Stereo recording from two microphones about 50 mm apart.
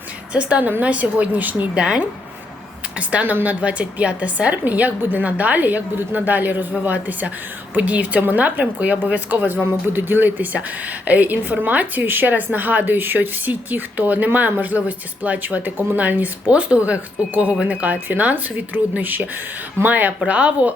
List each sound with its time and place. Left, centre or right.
0.3 s a woman's voice: right
1.7 s a woman's voice: right